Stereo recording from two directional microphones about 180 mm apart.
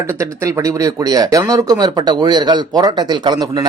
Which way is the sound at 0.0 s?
15° right (ahead or behind).